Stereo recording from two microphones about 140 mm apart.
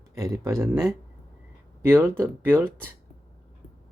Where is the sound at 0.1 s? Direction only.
25° right (ahead or behind).